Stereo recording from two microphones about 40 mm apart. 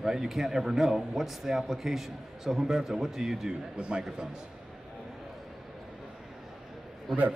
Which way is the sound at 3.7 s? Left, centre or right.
Right.